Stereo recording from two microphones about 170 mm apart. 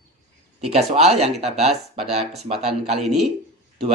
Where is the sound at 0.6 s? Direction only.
40° right (ahead or behind).